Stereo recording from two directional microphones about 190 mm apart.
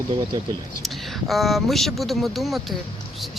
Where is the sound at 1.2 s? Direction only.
Centre (ahead or behind).